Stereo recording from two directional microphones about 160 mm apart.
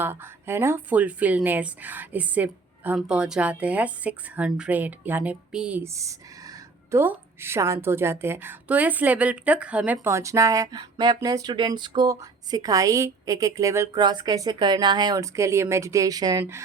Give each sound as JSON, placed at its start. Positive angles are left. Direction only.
{"t": 0.0, "sound": "speech", "side_deg": -15}
{"t": 5.8, "sound": "a woman's voice", "side_deg": -20}